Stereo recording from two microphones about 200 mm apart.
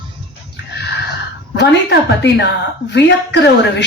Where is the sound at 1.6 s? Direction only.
60° left (ahead or behind).